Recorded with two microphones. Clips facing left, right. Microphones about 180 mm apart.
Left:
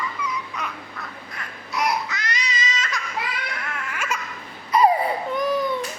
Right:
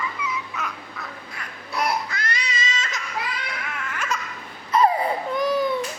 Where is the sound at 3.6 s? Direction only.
Centre (ahead or behind).